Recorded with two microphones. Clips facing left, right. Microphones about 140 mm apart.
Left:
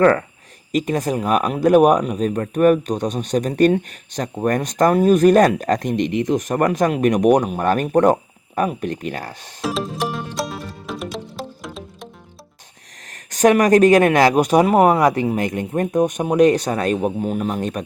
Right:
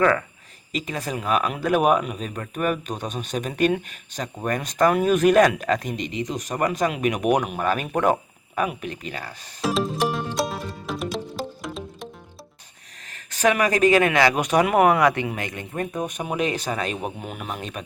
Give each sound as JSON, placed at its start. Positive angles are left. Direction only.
{"t": 0.0, "sound": "speech", "side_deg": 45}
{"t": 6.1, "sound": "speech", "side_deg": 55}
{"t": 9.6, "sound": "music", "side_deg": 0}
{"t": 13.5, "sound": "speech", "side_deg": 45}